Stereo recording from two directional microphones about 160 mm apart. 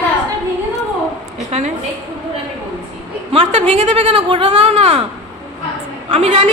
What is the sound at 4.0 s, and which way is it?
A woman's voice, 35° right (ahead or behind).